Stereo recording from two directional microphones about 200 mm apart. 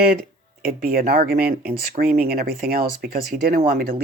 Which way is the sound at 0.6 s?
50° right (ahead or behind).